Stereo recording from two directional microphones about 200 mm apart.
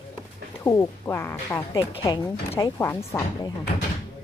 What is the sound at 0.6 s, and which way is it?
A woman's voice, 15° left (ahead or behind).